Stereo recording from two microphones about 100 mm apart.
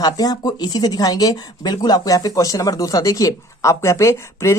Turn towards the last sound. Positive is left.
turn(degrees=30)  # may be behind; listen again after turning